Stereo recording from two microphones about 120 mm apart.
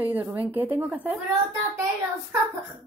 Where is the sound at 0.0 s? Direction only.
15° right (ahead or behind).